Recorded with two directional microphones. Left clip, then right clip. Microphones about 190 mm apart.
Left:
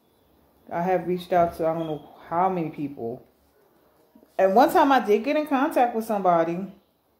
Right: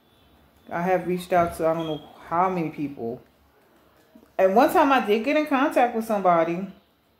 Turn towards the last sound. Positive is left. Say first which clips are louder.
# right 1 dB
turn(degrees=15)  # may be behind; listen again after turning